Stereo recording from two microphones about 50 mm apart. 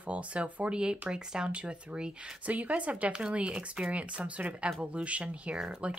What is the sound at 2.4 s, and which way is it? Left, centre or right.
Speech, right.